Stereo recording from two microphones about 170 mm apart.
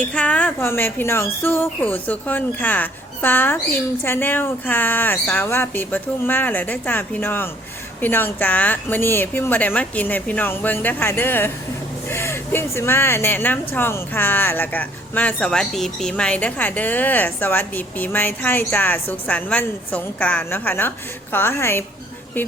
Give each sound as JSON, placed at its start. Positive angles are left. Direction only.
{"t": 0.0, "sound": "speech", "side_deg": 5}